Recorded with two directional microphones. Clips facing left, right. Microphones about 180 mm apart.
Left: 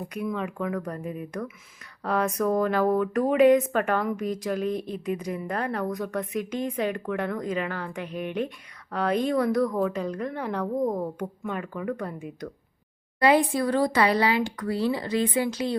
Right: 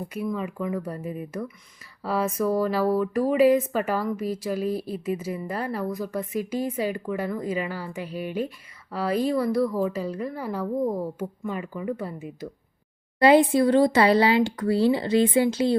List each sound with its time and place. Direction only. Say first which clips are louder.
0.1 s speech: even; 5° right (ahead or behind)
13.1 s speech: right 4 dB; 25° right (ahead or behind)